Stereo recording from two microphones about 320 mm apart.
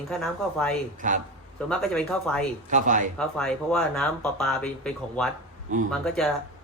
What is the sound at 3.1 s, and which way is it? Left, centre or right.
Speech, centre.